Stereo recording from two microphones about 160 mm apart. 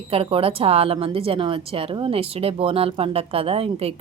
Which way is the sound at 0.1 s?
35° right (ahead or behind).